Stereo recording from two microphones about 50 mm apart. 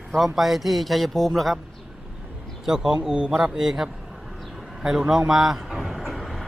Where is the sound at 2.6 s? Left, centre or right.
Centre.